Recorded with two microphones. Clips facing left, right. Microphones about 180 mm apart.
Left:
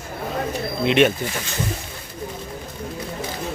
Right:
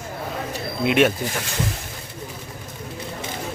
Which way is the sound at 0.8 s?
5° right (ahead or behind).